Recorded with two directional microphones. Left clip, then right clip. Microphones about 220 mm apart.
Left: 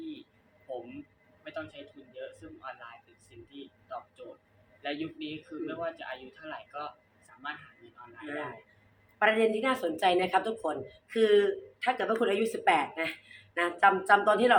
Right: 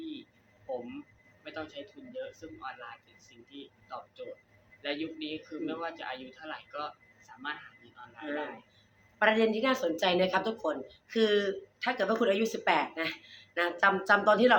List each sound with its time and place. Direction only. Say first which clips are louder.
1.5 s a sound: left 2 dB; 10° right (ahead or behind)
3.2 s a woman's voice: even; 10° right (ahead or behind)
9.1 s a woman's voice: left 1 dB; 10° right (ahead or behind)